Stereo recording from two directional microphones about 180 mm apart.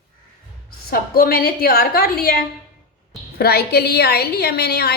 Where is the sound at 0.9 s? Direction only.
55° left (ahead or behind).